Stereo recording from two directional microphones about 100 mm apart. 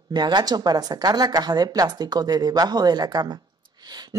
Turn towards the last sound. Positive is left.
turn(degrees=-45)  # may be behind; listen again after turning